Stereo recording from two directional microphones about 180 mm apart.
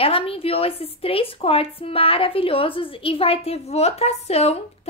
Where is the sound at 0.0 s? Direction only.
30° left (ahead or behind).